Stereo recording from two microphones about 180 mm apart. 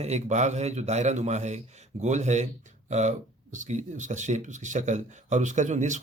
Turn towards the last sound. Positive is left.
turn(degrees=-40)  # may be behind; listen again after turning